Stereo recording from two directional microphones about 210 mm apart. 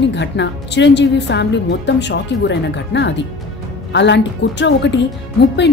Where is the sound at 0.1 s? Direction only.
55° left (ahead or behind).